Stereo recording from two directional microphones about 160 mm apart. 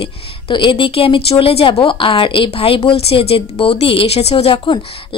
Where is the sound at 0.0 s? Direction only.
30° left (ahead or behind).